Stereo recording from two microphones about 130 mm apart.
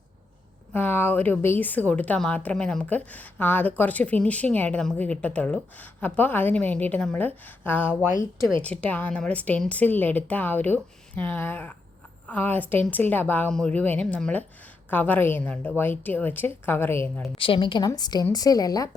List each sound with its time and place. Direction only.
0.7 s speech: 15° left (ahead or behind)
17.3 s a woman's voice: 45° left (ahead or behind)